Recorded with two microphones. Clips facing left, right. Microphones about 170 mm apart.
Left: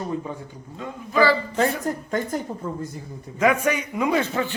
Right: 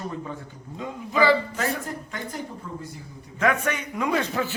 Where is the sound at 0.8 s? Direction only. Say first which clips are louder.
Left 2 dB; 15° right (ahead or behind).